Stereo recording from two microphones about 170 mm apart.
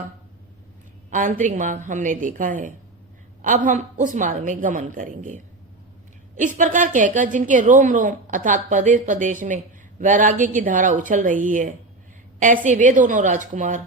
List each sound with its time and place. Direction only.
1.1 s a woman's voice: 50° right (ahead or behind)